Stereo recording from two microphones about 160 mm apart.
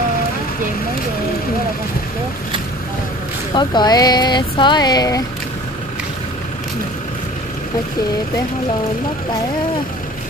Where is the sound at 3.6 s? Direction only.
25° left (ahead or behind).